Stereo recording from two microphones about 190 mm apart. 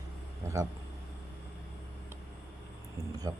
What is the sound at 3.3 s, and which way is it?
Speech, 20° right (ahead or behind).